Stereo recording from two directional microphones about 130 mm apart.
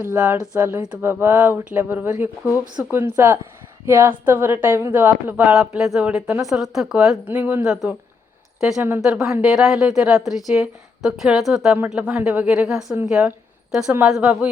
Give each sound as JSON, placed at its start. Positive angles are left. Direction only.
{"t": 0.0, "sound": "speech", "side_deg": -20}
{"t": 9.0, "sound": "a woman's voice", "side_deg": -5}